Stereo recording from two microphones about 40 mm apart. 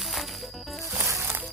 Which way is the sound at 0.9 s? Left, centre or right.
Right.